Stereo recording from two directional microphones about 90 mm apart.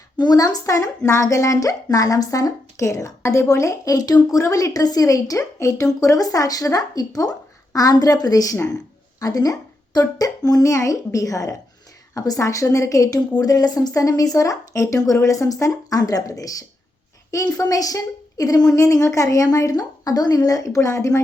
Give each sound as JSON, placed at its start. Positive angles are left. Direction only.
{"t": 0.2, "sound": "a woman's voice", "side_deg": 45}